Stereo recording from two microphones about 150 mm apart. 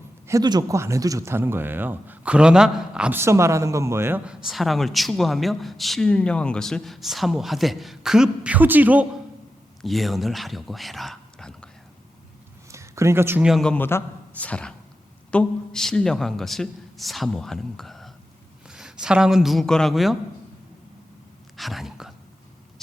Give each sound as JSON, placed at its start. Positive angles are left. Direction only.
{"t": 0.3, "sound": "speech", "side_deg": -25}
{"t": 4.3, "sound": "speech", "side_deg": -5}
{"t": 9.8, "sound": "speech", "side_deg": 0}
{"t": 12.7, "sound": "a sound", "side_deg": -20}
{"t": 13.4, "sound": "speech", "side_deg": 0}
{"t": 21.5, "sound": "speech", "side_deg": 0}